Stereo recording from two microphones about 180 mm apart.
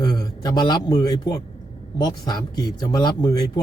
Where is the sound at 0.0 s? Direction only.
20° left (ahead or behind).